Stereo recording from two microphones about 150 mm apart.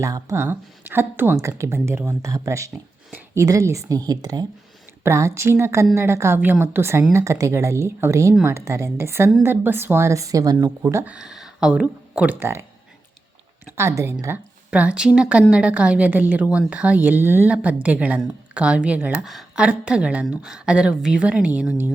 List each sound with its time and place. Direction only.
0.0 s a woman's voice: 20° right (ahead or behind)
13.7 s a woman's voice: 15° right (ahead or behind)